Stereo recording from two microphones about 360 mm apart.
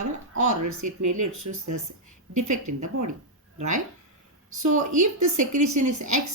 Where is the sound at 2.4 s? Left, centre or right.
Right.